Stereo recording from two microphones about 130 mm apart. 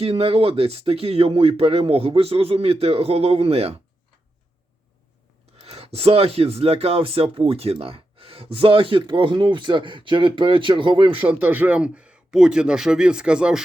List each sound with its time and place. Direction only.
0.0 s speech: 50° right (ahead or behind)
5.5 s speech: 50° right (ahead or behind)
11.2 s speech: 15° right (ahead or behind)